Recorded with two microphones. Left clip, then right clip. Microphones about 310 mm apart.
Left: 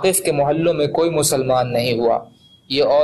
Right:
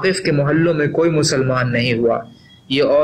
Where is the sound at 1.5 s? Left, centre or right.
Left.